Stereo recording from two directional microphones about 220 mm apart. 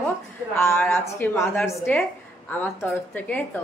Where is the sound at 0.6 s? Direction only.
10° left (ahead or behind).